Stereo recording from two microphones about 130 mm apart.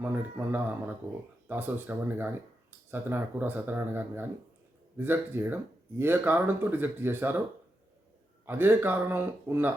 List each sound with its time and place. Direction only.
0.0 s speech: 15° right (ahead or behind)
8.4 s speech: 15° right (ahead or behind)